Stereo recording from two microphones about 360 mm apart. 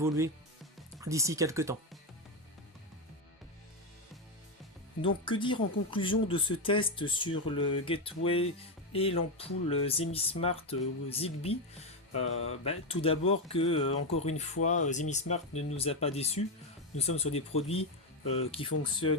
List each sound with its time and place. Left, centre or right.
0.0 s speech: centre
5.2 s speech: centre